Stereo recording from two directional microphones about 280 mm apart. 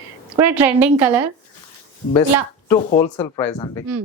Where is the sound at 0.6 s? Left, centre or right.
Centre.